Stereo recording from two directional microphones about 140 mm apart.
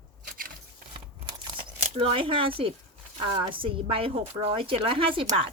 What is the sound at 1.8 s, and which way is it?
A woman's voice, 45° right (ahead or behind).